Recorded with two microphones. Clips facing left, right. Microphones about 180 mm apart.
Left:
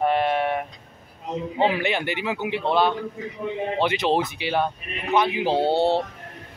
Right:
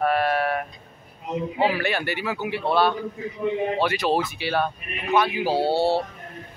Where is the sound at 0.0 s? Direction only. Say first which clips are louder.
Left 1 dB; 20° left (ahead or behind).